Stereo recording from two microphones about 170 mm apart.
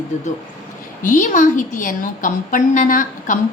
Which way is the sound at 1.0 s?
50° left (ahead or behind).